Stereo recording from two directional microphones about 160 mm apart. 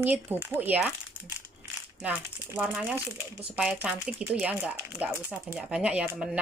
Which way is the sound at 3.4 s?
5° right (ahead or behind).